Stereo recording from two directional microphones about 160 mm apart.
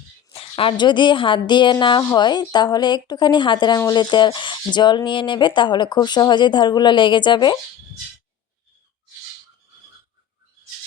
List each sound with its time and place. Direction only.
0.3 s a woman's voice: 35° left (ahead or behind)